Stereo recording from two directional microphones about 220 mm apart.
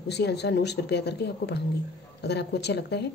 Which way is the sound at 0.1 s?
50° left (ahead or behind).